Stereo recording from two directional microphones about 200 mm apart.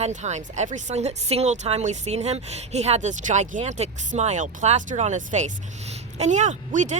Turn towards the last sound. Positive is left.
turn(degrees=-35)  # may be behind; listen again after turning